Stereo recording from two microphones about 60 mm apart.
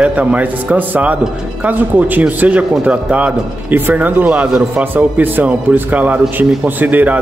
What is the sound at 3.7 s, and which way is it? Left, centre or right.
A man's voice, right.